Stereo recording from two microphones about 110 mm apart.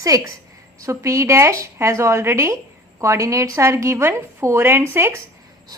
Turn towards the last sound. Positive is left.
turn(degrees=-20)  # may be behind; listen again after turning